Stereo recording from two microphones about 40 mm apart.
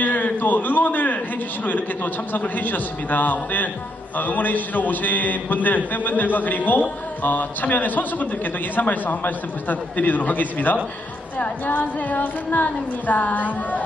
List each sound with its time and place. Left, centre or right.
0.0 s a man's voice: left